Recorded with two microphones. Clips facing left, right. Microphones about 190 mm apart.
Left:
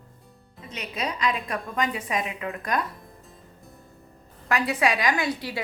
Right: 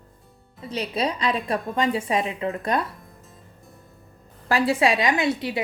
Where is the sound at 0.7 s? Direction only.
30° right (ahead or behind).